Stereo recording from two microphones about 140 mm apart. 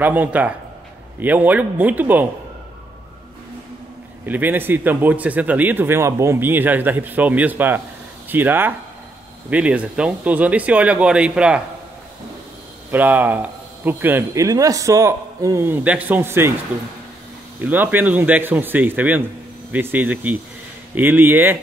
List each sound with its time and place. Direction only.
0.0 s speech: 10° right (ahead or behind)
4.3 s speech: 15° right (ahead or behind)
12.9 s speech: 15° right (ahead or behind)
17.6 s speech: 15° right (ahead or behind)